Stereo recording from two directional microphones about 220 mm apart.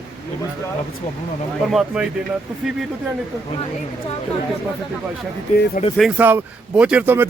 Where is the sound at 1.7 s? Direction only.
5° right (ahead or behind).